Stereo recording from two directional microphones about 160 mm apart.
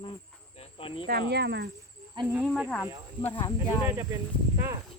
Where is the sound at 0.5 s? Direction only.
35° left (ahead or behind).